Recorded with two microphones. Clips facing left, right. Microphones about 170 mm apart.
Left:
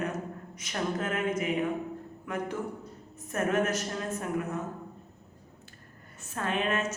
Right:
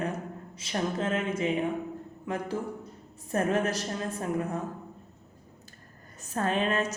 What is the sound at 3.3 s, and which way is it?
A man's voice, 30° right (ahead or behind).